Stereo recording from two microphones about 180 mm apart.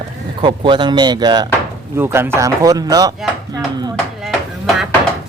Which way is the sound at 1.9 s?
15° right (ahead or behind).